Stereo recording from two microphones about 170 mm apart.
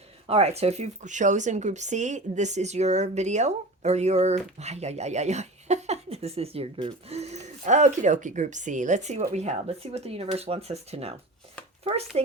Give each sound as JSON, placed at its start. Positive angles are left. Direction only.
{"t": 0.3, "sound": "speech", "side_deg": -35}
{"t": 12.1, "sound": "speech", "side_deg": -40}